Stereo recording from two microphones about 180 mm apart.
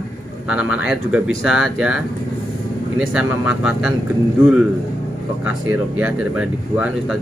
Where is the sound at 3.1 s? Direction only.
5° right (ahead or behind).